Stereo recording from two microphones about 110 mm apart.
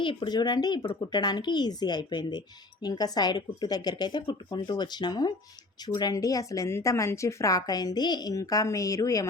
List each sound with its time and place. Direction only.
0.0 s speech: 45° left (ahead or behind); by 9.3 s 30° left (ahead or behind)